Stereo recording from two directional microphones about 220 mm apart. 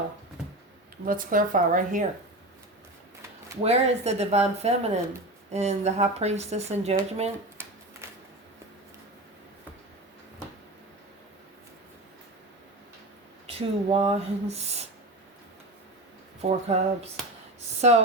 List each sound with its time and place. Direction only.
1.0 s speech: 40° right (ahead or behind)
3.6 s speech: 30° right (ahead or behind)
13.5 s speech: 25° right (ahead or behind)
16.4 s speech: 30° right (ahead or behind)
17.6 s a sound: 30° right (ahead or behind)